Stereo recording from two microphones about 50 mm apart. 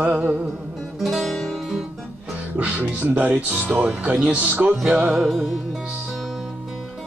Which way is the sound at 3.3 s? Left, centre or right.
Centre.